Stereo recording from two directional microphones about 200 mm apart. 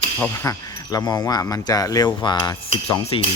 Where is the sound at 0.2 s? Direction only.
15° left (ahead or behind).